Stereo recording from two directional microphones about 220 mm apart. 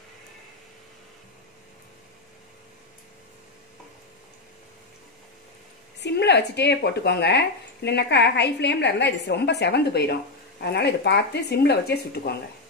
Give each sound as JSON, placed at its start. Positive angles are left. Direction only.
{"t": 6.0, "sound": "speech", "side_deg": 50}